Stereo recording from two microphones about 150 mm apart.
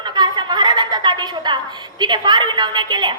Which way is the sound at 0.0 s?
30° right (ahead or behind).